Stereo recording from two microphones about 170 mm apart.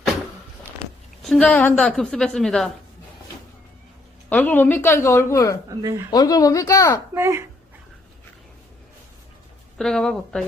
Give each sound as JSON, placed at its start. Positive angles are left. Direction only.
{"t": 1.2, "sound": "a woman's voice", "side_deg": 5}
{"t": 4.3, "sound": "a woman's voice", "side_deg": 10}
{"t": 5.6, "sound": "speech", "side_deg": -20}
{"t": 6.1, "sound": "speech", "side_deg": 20}
{"t": 7.1, "sound": "speech", "side_deg": -15}
{"t": 9.7, "sound": "a woman's voice", "side_deg": 5}